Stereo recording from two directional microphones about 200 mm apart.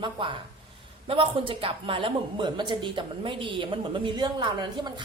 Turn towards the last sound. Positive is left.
turn(degrees=-20)  # may be behind; listen again after turning